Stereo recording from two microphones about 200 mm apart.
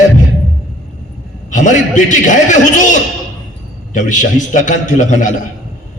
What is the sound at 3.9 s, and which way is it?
A man's voice, 40° left (ahead or behind).